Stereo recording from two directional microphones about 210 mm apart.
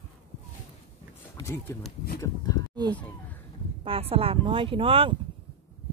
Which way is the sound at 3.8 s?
25° right (ahead or behind).